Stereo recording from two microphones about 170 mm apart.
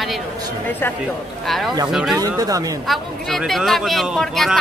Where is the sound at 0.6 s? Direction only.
10° left (ahead or behind).